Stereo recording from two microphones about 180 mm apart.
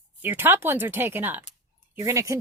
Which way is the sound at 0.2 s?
10° right (ahead or behind).